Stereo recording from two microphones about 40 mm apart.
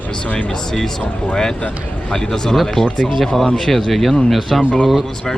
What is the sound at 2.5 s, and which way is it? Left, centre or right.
Speech, centre.